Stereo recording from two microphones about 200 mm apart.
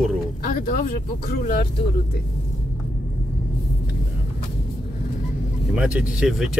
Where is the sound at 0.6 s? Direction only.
45° left (ahead or behind).